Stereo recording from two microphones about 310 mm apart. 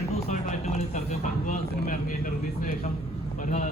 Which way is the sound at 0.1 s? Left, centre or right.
Left.